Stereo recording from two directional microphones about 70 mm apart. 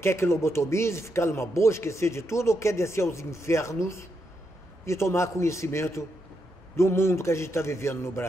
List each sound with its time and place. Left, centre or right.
0.0 s a man's voice: left